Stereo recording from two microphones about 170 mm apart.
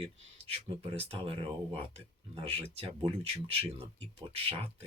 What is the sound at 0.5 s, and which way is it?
Speech, 35° right (ahead or behind).